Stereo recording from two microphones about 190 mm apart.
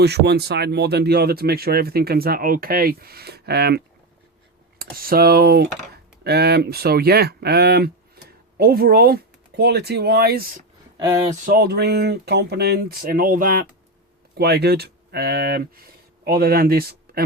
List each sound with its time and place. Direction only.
0.0 s speech: 60° right (ahead or behind)
11.4 s speech: 55° right (ahead or behind)
14.3 s speech: 55° right (ahead or behind)